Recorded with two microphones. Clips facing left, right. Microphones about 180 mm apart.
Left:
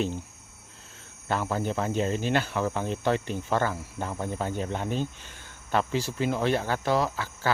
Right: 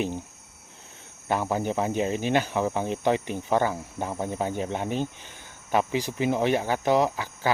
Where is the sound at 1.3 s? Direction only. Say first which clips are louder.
Right 2 dB; 15° right (ahead or behind).